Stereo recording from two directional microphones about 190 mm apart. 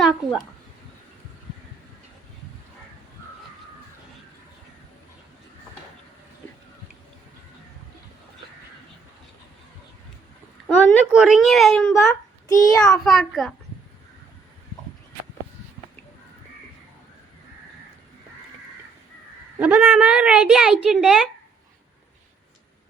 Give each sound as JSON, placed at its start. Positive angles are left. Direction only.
{"t": 0.0, "sound": "a woman's voice", "side_deg": 0}
{"t": 11.1, "sound": "a woman's voice", "side_deg": -5}
{"t": 11.9, "sound": "a child's voice", "side_deg": 15}
{"t": 12.8, "sound": "a woman's voice", "side_deg": 0}
{"t": 19.5, "sound": "a woman's voice", "side_deg": -10}